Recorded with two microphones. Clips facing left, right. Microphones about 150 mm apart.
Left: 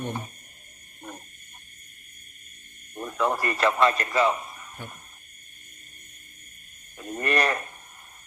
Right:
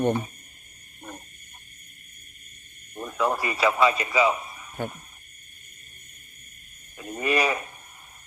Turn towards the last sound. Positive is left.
turn(degrees=-5)  # may be behind; listen again after turning